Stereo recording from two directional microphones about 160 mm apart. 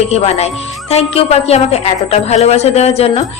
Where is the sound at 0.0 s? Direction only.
40° left (ahead or behind).